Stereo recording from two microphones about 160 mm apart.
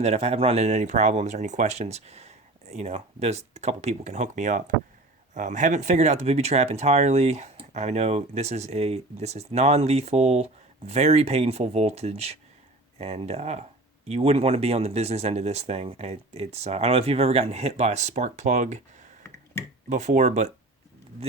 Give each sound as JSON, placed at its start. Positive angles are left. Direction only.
{"t": 0.0, "sound": "speech", "side_deg": -40}
{"t": 19.9, "sound": "speech", "side_deg": -50}